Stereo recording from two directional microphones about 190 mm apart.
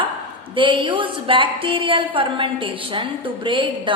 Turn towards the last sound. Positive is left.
turn(degrees=-25)  # may be behind; listen again after turning